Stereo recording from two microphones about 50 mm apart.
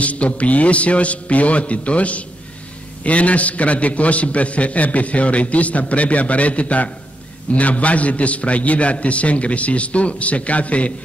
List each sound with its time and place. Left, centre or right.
0.0 s a man's voice: left